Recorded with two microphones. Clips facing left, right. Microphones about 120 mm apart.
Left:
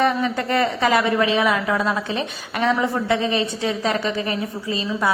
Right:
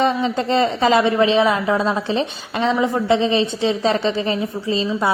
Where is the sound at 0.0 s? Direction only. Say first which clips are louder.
Right 2 dB; 20° right (ahead or behind).